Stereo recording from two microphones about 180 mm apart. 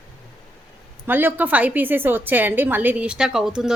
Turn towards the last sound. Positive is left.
turn(degrees=-5)  # may be behind; listen again after turning